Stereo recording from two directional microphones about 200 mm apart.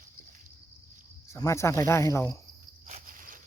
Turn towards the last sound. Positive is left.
turn(degrees=-45)  # may be behind; listen again after turning